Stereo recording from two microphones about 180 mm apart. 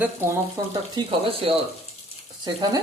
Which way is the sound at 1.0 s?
30° right (ahead or behind).